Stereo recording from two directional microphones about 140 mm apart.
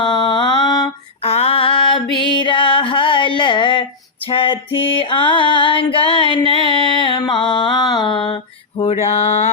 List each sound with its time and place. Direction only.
0.0 s mantra: 35° left (ahead or behind)
1.2 s female singing: 45° left (ahead or behind)
2.1 s a sound: 35° left (ahead or behind)
4.3 s female singing: 40° left (ahead or behind)
6.7 s carnatic music: 40° right (ahead or behind)
7.0 s mantra: 35° left (ahead or behind)